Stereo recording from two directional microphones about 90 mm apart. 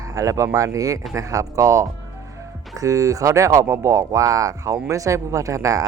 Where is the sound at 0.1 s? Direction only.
40° right (ahead or behind).